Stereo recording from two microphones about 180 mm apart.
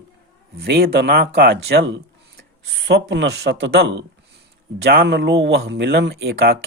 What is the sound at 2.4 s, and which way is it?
Speech, 85° right.